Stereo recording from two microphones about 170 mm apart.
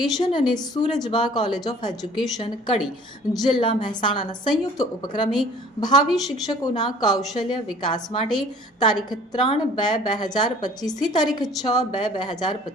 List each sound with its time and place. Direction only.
0.0 s a woman's voice: 25° left (ahead or behind)
3.3 s a woman's voice: 25° left (ahead or behind)